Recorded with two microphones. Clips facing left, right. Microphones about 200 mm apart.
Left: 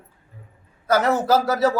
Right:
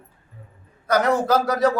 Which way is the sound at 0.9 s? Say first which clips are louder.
Even; 5° left (ahead or behind).